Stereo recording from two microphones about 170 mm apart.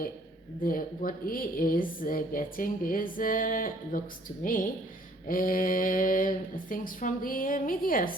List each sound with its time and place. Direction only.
0.6 s a woman's voice: 55° left (ahead or behind)
5.3 s speech: 55° left (ahead or behind)